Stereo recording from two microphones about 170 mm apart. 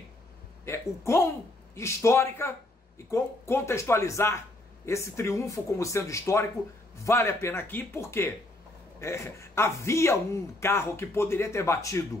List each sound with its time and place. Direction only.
0.7 s speech: 15° left (ahead or behind)